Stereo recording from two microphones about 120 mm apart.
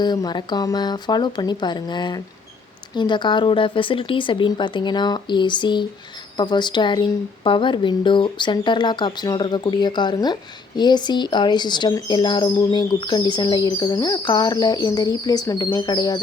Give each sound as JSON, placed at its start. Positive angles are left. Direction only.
{"t": 0.0, "sound": "speech", "side_deg": 35}